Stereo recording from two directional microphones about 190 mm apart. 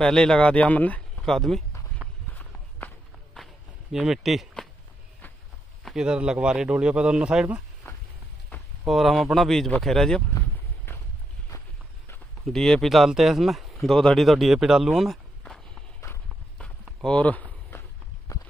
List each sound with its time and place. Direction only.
0.0 s a man's voice: 5° left (ahead or behind)
2.0 s run: 10° right (ahead or behind)
3.9 s a man's voice: centre (ahead or behind)
5.9 s a man's voice: 5° right (ahead or behind)
10.9 s a sound: 10° left (ahead or behind)
12.4 s speech: centre (ahead or behind)
16.1 s walk: 5° left (ahead or behind)
18.3 s clip-clop: 15° left (ahead or behind)